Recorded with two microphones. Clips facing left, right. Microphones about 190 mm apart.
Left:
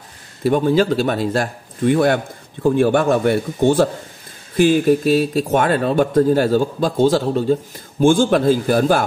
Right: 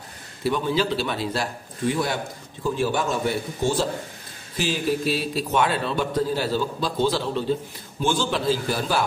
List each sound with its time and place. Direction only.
0.4 s a man's voice: 50° left (ahead or behind)